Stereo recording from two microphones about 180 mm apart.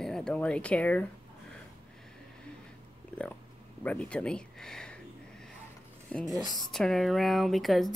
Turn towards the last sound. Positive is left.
turn(degrees=0)  # may be behind; listen again after turning